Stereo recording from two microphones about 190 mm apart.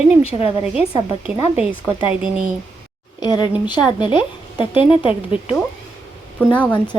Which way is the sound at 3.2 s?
20° left (ahead or behind).